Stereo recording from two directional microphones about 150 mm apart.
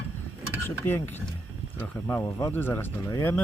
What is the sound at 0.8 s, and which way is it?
Speech, 15° left (ahead or behind).